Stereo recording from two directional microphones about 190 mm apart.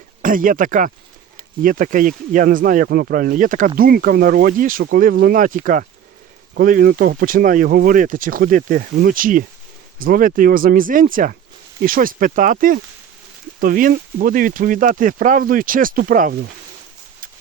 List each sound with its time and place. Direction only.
0.2 s speech: 45° right (ahead or behind)